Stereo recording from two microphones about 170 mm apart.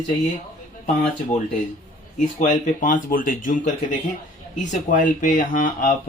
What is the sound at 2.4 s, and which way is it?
Speech, 50° left (ahead or behind).